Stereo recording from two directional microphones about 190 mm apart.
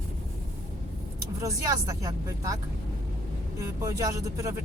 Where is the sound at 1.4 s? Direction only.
15° right (ahead or behind).